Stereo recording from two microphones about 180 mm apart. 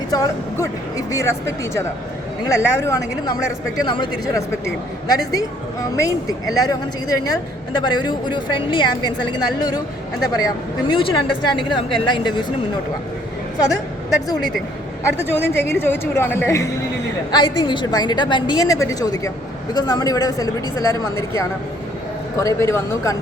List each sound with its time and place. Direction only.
0.1 s speech: 20° left (ahead or behind)
15.0 s speech: 15° left (ahead or behind)
17.3 s speech: 25° left (ahead or behind)